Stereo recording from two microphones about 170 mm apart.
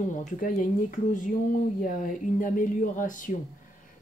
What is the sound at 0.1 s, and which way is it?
Speech, 50° left (ahead or behind).